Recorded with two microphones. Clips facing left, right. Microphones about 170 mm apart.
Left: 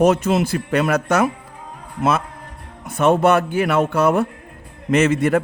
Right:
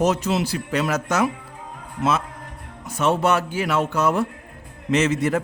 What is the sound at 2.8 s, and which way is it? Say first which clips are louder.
A man's voice: left 5 dB; 55° left (ahead or behind).